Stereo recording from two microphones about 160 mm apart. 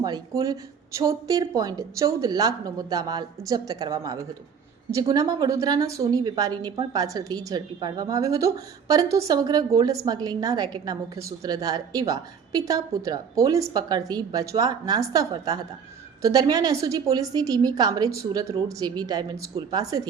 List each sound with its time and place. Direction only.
0.0 s a woman's voice: 25° right (ahead or behind)